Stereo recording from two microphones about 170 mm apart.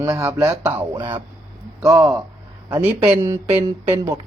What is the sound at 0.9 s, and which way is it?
Speech, 25° right (ahead or behind).